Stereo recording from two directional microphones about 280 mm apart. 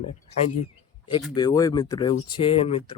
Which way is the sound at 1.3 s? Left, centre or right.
Centre.